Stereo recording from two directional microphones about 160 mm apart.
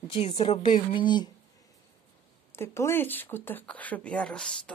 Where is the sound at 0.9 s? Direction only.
30° left (ahead or behind).